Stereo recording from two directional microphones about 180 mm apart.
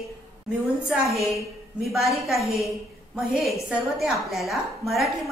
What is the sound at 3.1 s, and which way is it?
A woman's voice, 5° right (ahead or behind).